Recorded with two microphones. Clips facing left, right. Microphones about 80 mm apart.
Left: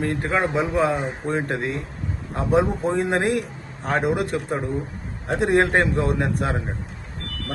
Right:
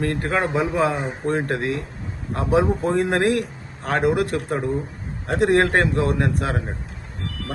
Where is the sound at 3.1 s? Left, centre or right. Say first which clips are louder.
Right 2 dB; right.